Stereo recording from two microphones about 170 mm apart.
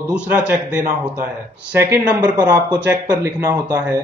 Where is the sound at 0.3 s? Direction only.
10° right (ahead or behind).